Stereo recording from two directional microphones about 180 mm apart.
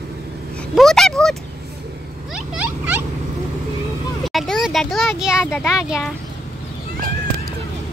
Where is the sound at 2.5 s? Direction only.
10° right (ahead or behind).